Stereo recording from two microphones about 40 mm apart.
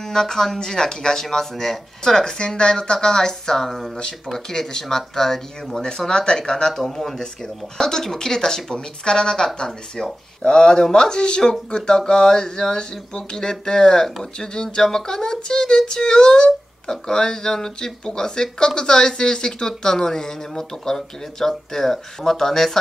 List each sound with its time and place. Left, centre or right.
0.0 s speech: centre